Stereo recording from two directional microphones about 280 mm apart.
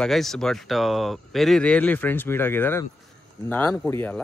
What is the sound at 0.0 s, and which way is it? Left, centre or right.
Speech, centre.